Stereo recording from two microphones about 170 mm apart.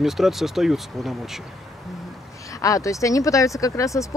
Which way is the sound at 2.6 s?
20° left (ahead or behind).